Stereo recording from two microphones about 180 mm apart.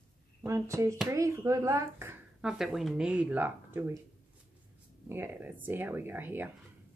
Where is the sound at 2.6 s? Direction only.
Centre (ahead or behind).